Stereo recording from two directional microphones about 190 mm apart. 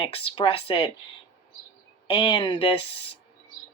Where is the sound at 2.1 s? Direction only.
30° left (ahead or behind).